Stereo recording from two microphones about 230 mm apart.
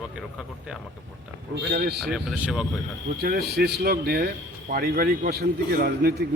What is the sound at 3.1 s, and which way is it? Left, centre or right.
Speech, right.